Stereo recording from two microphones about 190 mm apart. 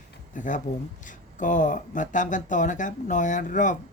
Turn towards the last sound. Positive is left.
turn(degrees=40)  # may be behind; listen again after turning